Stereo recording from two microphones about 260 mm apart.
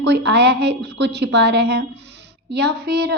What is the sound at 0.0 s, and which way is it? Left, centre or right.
A woman's voice, right.